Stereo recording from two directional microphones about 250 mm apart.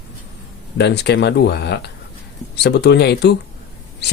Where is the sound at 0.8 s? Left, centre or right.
Left.